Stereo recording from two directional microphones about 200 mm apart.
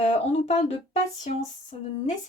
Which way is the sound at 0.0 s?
35° left (ahead or behind).